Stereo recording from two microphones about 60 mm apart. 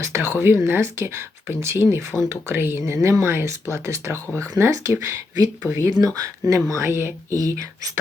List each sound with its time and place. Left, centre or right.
0.0 s speech: right
6.0 s speech: right
6.5 s speech: right
6.8 s speech: right
7.3 s speech: right